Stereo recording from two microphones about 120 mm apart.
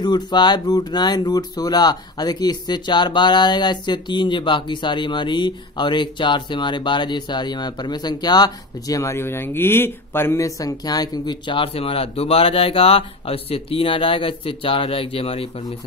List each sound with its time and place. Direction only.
0.0 s speech: 35° left (ahead or behind); by 15.4 s 55° left (ahead or behind)